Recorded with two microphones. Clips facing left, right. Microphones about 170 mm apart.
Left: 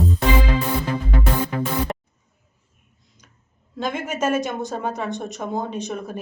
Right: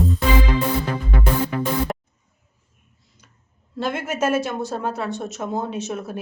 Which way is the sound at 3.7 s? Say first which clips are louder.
Right 1 dB; 5° right (ahead or behind).